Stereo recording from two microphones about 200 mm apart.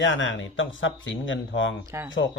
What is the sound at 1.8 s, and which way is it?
Speech, 15° right (ahead or behind).